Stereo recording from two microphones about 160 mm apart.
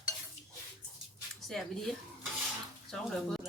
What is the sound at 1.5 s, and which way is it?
Speech, centre (ahead or behind).